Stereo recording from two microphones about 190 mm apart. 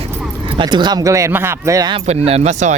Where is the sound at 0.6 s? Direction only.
25° right (ahead or behind).